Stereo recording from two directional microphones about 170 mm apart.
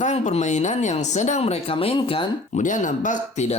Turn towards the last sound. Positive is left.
turn(degrees=40)  # may be behind; listen again after turning